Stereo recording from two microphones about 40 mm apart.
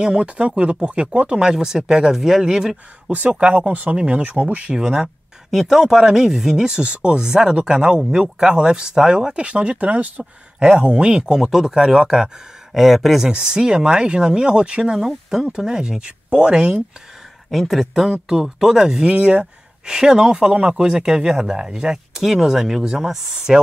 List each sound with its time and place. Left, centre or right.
0.0 s speech: right
1.4 s speech: centre
3.1 s speech: right
4.7 s speech: centre
5.5 s speech: centre; by 10.2 s right
10.6 s speech: right; by 13.3 s centre
13.3 s speech: centre
17.5 s speech: centre
18.3 s speech: centre
19.1 s speech: right
19.9 s speech: centre